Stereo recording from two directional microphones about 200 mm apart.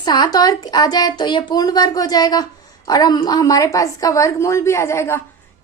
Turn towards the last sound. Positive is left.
turn(degrees=15)  # may be behind; listen again after turning